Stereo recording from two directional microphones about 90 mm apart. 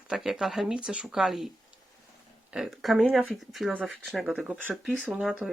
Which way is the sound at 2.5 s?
5° right (ahead or behind).